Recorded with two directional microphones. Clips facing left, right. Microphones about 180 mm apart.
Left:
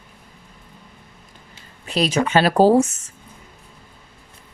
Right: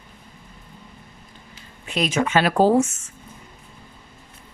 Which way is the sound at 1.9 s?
35° left (ahead or behind).